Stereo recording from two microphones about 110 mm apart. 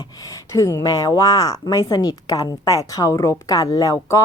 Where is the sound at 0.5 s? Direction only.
30° left (ahead or behind).